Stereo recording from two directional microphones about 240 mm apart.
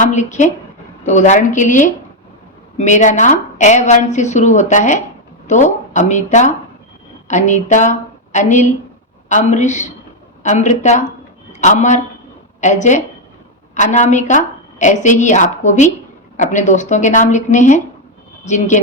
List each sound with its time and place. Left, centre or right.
0.0 s a woman's voice: left